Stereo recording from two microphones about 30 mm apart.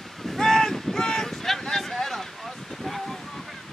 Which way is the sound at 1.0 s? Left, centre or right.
Left.